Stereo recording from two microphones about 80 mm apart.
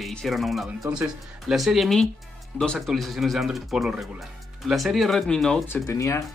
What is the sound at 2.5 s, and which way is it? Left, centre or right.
Speech, centre.